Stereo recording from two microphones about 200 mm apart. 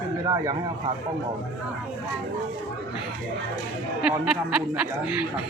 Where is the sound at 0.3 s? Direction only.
20° right (ahead or behind).